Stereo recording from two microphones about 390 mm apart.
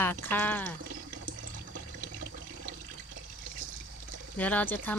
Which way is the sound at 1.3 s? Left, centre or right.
Right.